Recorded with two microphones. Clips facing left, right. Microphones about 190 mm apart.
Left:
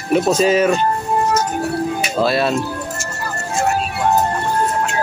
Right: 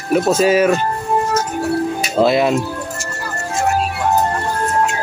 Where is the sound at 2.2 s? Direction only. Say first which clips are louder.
Right 4 dB; 15° right (ahead or behind).